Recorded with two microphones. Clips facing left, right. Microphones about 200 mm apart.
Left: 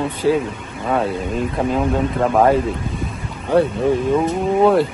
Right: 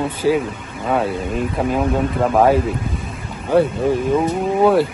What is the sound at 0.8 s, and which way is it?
Speech, centre (ahead or behind).